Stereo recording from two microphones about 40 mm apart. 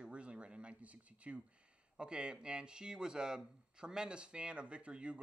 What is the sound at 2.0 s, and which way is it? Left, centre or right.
Speech, right.